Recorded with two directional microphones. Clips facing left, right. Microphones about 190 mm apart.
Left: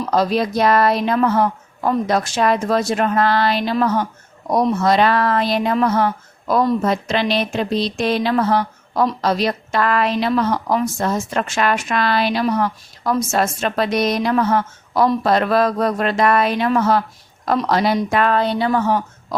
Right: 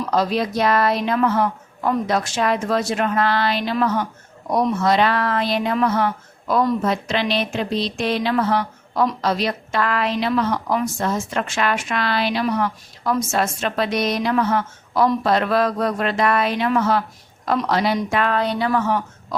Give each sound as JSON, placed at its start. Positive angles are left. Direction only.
{"t": 0.1, "sound": "a woman's voice", "side_deg": 40}